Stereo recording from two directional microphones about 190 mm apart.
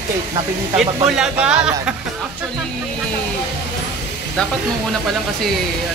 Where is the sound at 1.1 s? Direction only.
5° right (ahead or behind).